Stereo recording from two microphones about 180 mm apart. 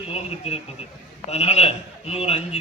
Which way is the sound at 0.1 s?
35° left (ahead or behind).